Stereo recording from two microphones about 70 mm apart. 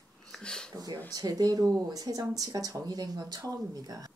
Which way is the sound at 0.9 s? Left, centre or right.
Right.